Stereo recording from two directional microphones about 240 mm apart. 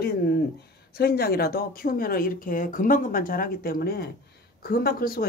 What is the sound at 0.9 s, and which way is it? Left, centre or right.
Speech, left.